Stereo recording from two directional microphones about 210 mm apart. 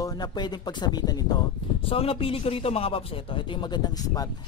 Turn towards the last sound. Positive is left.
turn(degrees=15)  # may be behind; listen again after turning